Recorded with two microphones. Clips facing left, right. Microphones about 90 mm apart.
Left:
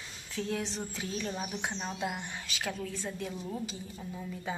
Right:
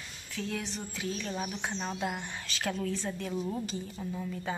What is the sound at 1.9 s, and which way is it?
Speech, 5° right (ahead or behind).